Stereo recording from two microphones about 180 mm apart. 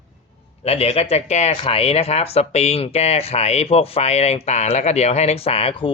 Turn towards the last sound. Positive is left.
turn(degrees=30)  # may be behind; listen again after turning